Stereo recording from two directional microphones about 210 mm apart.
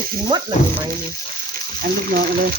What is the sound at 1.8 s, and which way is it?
Speech, 45° right (ahead or behind).